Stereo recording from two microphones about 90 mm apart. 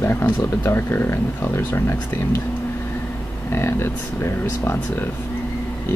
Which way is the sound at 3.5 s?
30° left (ahead or behind).